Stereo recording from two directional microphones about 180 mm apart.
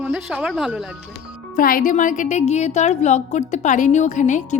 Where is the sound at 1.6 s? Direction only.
50° left (ahead or behind).